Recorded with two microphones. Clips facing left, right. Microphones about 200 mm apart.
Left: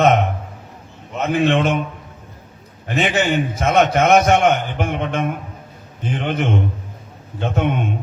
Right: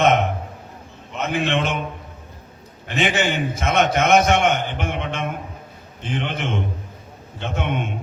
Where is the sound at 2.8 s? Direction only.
40° left (ahead or behind).